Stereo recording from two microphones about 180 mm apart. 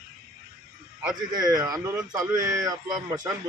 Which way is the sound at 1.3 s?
20° right (ahead or behind).